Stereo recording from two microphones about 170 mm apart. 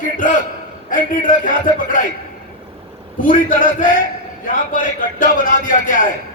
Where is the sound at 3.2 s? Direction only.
50° left (ahead or behind).